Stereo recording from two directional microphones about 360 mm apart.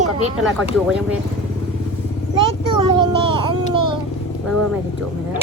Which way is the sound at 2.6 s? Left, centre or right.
Centre.